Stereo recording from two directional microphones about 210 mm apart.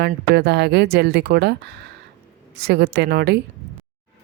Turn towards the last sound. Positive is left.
turn(degrees=-50)  # may be behind; listen again after turning